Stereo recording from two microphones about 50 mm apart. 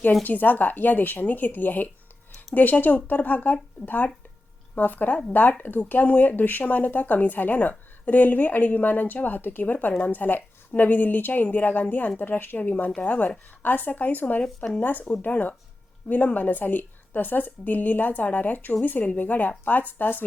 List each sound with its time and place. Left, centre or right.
0.2 s speech: left